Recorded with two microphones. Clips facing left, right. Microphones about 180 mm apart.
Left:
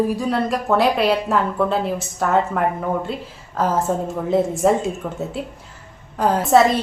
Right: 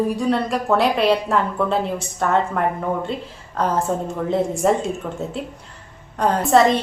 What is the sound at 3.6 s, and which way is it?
A woman's voice, 5° left (ahead or behind).